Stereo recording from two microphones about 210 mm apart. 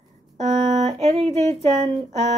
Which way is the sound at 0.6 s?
30° right (ahead or behind).